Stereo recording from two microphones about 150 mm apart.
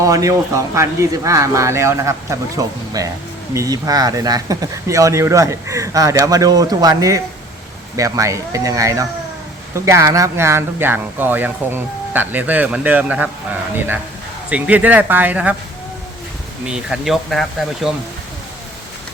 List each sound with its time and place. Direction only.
0.0 s speech: 20° right (ahead or behind)
16.6 s speech: 5° right (ahead or behind)